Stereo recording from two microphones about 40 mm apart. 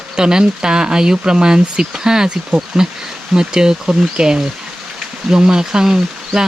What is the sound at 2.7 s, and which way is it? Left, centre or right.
Speech, centre.